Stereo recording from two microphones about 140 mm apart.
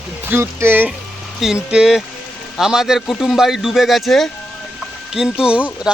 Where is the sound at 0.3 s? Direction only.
15° right (ahead or behind).